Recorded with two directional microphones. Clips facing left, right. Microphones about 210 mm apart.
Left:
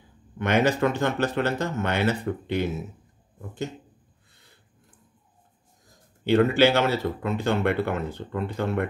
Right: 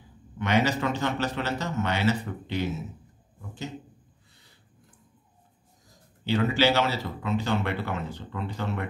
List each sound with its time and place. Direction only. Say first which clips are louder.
0.4 s speech: left 3 dB; 55° left (ahead or behind)
6.2 s speech: left 5 dB; 55° left (ahead or behind)